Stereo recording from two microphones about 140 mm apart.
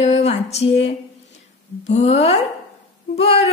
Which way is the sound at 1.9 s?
50° left (ahead or behind).